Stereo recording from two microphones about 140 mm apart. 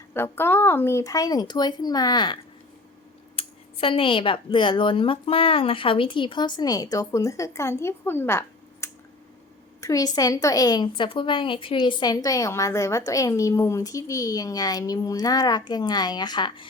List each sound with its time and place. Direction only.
0.1 s a woman's voice: 15° left (ahead or behind); by 16.6 s 30° left (ahead or behind)